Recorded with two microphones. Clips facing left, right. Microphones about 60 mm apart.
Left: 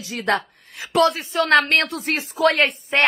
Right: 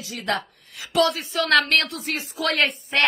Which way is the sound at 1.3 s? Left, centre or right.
Left.